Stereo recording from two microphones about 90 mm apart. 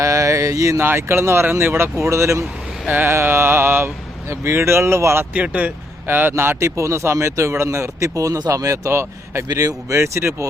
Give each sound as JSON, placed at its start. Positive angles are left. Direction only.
{"t": 0.0, "sound": "speech", "side_deg": -35}
{"t": 2.8, "sound": "speech", "side_deg": -20}
{"t": 5.3, "sound": "speech", "side_deg": -15}